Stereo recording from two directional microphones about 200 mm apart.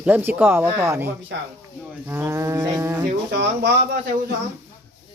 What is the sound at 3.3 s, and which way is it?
Speech, 55° right (ahead or behind).